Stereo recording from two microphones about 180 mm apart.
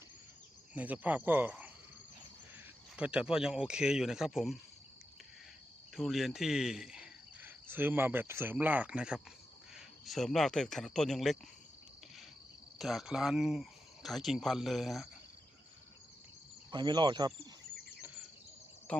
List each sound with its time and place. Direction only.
0.7 s cricket: 10° right (ahead or behind)
2.9 s speech: 5° right (ahead or behind)
6.0 s speech: centre (ahead or behind)
12.8 s speech: centre (ahead or behind)
16.7 s speech: 25° right (ahead or behind)